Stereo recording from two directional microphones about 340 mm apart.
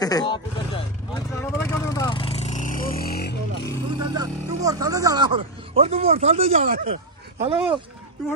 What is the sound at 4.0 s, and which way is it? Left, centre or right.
Speech, centre.